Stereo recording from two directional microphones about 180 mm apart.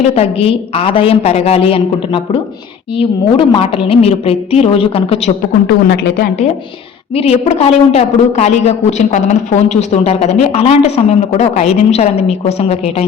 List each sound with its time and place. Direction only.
0.0 s a woman's voice: 35° left (ahead or behind)
5.6 s a woman's voice: 60° left (ahead or behind)
7.2 s a woman's voice: 35° left (ahead or behind)